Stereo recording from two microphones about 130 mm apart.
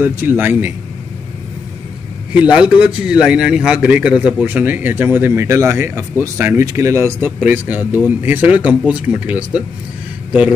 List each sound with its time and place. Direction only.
0.0 s a man's voice: 15° right (ahead or behind)
2.3 s a man's voice: 10° right (ahead or behind)